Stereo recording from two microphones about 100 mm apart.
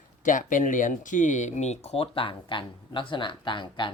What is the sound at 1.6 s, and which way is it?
Speech, 90° left.